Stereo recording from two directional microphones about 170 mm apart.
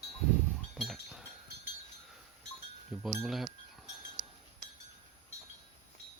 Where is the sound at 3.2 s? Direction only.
Centre (ahead or behind).